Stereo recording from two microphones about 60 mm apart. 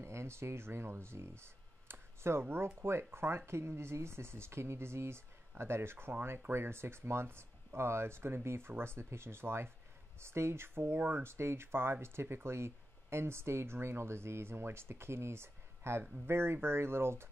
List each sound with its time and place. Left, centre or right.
0.0 s speech: right
11.2 s speech: right